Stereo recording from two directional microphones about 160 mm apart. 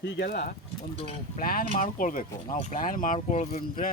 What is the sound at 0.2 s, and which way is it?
Speech, 80° left.